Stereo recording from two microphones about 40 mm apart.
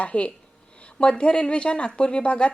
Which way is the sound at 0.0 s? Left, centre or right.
Left.